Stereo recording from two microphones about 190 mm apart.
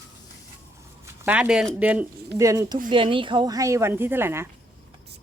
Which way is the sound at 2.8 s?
25° right (ahead or behind).